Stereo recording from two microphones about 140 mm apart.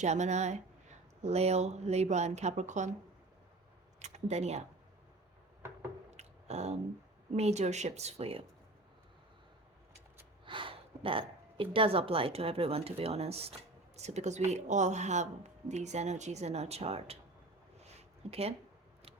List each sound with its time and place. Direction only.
0.0 s a woman's voice: 55° right (ahead or behind)
4.0 s speech: 50° right (ahead or behind)
6.1 s a sound: 50° right (ahead or behind)
7.3 s a woman's voice: 50° right (ahead or behind)
10.4 s a woman's voice: 35° right (ahead or behind)
17.9 s a sound: 45° right (ahead or behind)